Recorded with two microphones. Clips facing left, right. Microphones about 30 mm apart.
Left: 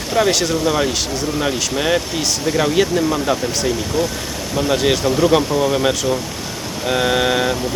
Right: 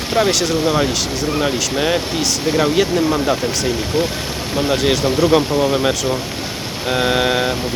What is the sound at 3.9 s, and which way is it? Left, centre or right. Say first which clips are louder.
Speech: right 2 dB; right.